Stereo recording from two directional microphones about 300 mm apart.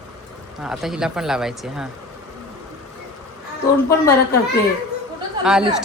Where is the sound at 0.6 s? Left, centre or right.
Centre.